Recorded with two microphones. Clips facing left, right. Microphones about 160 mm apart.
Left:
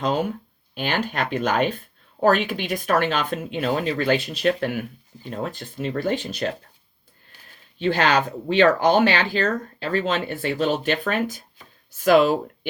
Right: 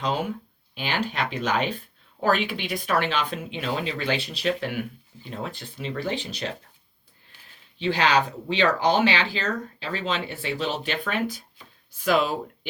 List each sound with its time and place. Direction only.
0.0 s speech: 45° left (ahead or behind)
7.8 s speech: 50° left (ahead or behind)